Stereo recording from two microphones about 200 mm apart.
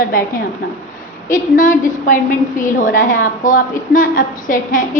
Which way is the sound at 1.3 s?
40° left (ahead or behind).